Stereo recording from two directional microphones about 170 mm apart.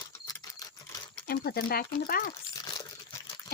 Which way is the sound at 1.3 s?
65° left (ahead or behind).